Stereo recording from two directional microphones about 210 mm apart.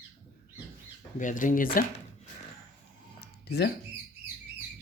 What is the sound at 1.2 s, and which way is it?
Speech, 40° left (ahead or behind).